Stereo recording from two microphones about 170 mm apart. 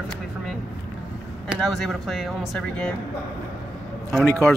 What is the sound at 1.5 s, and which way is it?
A woman's voice, centre (ahead or behind).